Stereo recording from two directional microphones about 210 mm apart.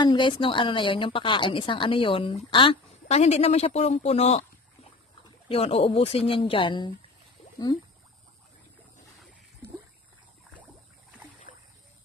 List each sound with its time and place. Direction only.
0.0 s a woman's voice: 25° left (ahead or behind)
5.5 s a woman's voice: 30° left (ahead or behind)
7.5 s frog: 20° left (ahead or behind)